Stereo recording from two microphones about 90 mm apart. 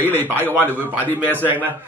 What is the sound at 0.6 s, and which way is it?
Speech, 20° left (ahead or behind).